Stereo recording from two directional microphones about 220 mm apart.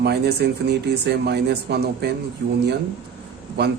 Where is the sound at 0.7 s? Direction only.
50° right (ahead or behind).